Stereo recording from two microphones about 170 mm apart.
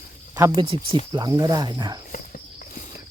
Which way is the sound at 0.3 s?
15° right (ahead or behind).